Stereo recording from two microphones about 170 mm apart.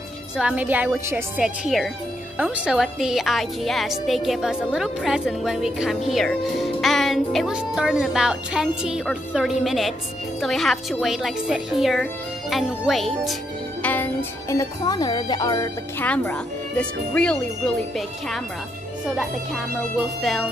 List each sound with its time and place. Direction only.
0.4 s a woman's voice: 5° right (ahead or behind)
13.8 s speech: 10° left (ahead or behind)
16.1 s a woman's voice: 5° left (ahead or behind)